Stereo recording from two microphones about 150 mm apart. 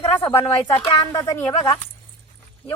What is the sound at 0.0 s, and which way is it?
Speech, 25° left (ahead or behind).